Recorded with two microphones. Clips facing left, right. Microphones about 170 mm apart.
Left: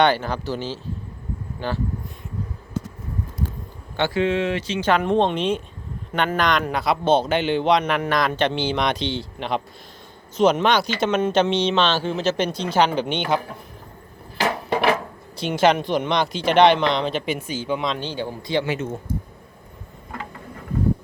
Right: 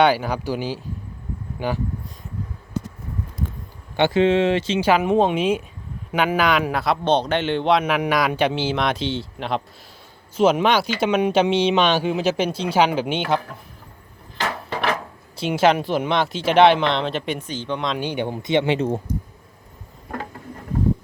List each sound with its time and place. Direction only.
0.0 s speech: 10° right (ahead or behind)
3.9 s speech: 20° right (ahead or behind)
4.8 s a man's voice: 5° right (ahead or behind)
15.4 s a man's voice: 5° right (ahead or behind)
18.0 s speech: 15° right (ahead or behind)